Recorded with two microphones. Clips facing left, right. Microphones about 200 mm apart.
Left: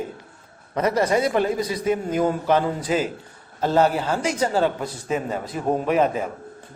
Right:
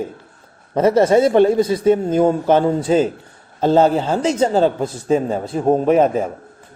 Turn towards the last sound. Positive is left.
turn(degrees=-35)  # may be behind; listen again after turning